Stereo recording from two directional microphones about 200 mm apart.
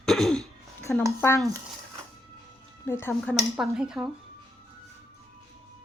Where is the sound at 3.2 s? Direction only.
Centre (ahead or behind).